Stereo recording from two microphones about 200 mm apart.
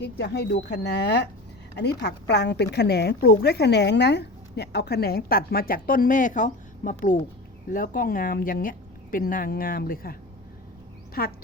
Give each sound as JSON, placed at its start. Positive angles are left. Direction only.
{"t": 0.0, "sound": "a woman's voice", "side_deg": 60}
{"t": 11.2, "sound": "speech", "side_deg": 45}